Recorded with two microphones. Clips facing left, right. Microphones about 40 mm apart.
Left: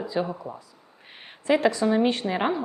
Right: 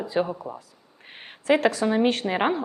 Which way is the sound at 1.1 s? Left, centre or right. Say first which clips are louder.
Right 3 dB; right.